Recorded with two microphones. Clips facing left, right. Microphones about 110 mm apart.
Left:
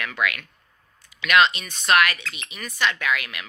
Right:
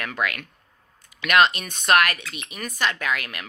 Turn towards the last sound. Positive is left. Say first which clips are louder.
# left 1 dB
turn(degrees=-40)  # may be behind; listen again after turning